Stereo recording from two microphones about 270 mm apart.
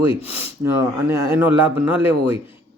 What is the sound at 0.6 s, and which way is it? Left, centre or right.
Speech, centre.